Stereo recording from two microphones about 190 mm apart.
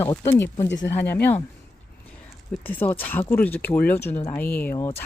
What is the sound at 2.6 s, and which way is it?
Speech, 10° left (ahead or behind).